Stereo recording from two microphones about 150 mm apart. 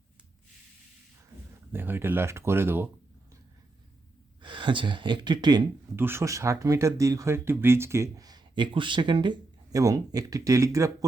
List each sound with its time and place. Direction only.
1.7 s speech: 15° right (ahead or behind)
4.4 s speech: 35° right (ahead or behind)
6.0 s speech: 15° right (ahead or behind)